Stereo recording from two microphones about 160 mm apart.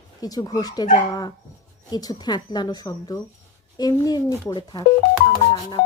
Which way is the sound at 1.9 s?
25° left (ahead or behind).